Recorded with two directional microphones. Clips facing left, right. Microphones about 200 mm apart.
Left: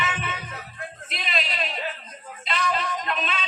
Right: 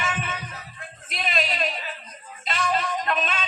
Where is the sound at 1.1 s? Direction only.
45° right (ahead or behind).